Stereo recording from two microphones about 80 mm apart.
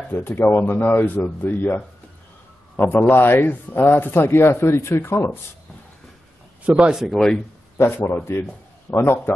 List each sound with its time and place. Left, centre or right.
0.1 s a man's voice: left
6.6 s a man's voice: centre
7.7 s a sound: left
8.2 s a man's voice: left